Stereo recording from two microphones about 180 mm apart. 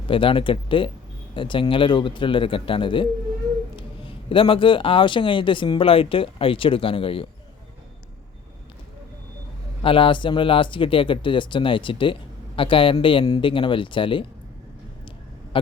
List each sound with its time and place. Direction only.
0.1 s speech: 30° left (ahead or behind)
9.8 s speech: 30° left (ahead or behind)
15.5 s a sound: 30° left (ahead or behind)